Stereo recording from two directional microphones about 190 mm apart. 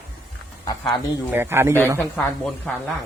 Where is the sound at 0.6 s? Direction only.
20° left (ahead or behind).